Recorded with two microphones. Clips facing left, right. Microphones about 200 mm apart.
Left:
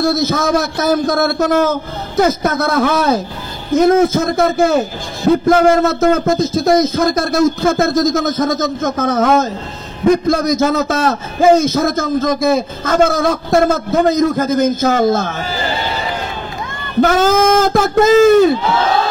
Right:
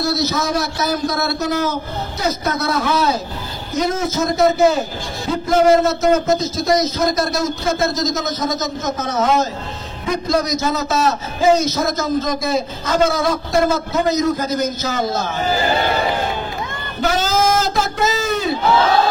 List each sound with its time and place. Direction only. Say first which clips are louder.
0.0 s a man's voice: left 5 dB; 50° left (ahead or behind)
17.0 s a man's voice: left 6 dB; 50° left (ahead or behind)